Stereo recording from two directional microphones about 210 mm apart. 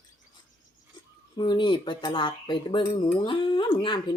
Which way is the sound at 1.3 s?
20° left (ahead or behind).